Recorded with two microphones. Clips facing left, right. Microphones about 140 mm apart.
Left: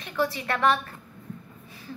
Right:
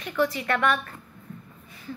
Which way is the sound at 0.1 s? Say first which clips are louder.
Right 2 dB; 30° left (ahead or behind).